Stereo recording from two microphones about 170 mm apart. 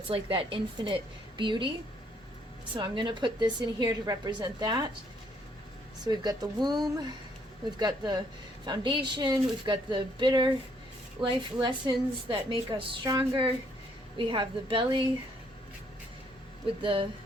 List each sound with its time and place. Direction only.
0.1 s a woman's voice: 30° right (ahead or behind)
2.7 s a woman's voice: 25° right (ahead or behind)
6.1 s a woman's voice: 25° right (ahead or behind)
7.8 s a woman's voice: 25° right (ahead or behind)
16.6 s a woman's voice: 30° right (ahead or behind)